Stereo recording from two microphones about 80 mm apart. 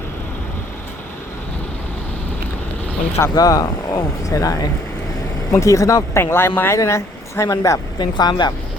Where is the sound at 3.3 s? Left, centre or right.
Left.